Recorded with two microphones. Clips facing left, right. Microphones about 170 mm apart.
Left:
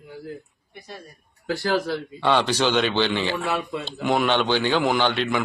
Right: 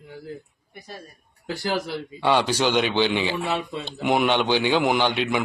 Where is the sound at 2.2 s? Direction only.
10° right (ahead or behind).